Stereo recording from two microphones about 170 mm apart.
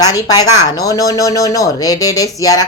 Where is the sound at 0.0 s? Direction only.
20° left (ahead or behind).